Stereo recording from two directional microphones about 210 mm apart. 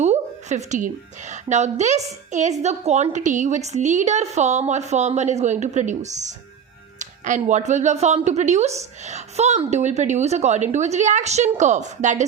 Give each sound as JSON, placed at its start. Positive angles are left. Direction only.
{"t": 0.0, "sound": "a woman's voice", "side_deg": -35}
{"t": 7.0, "sound": "music", "side_deg": -35}
{"t": 7.7, "sound": "a woman's voice", "side_deg": -35}